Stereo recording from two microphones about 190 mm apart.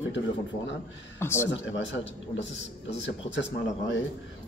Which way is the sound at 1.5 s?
70° left (ahead or behind).